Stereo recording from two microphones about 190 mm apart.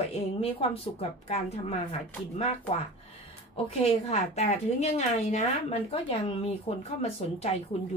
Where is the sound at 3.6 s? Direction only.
35° left (ahead or behind).